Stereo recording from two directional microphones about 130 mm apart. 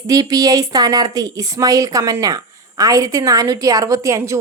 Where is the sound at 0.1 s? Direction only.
30° right (ahead or behind).